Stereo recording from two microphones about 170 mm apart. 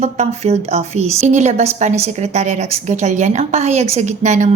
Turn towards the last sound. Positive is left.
turn(degrees=-45)  # may be behind; listen again after turning